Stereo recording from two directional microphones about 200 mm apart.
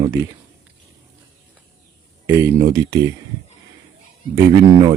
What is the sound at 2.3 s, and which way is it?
Speech, 15° right (ahead or behind).